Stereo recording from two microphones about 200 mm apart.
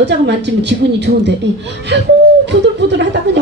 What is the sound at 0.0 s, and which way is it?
A man's voice, 60° right (ahead or behind).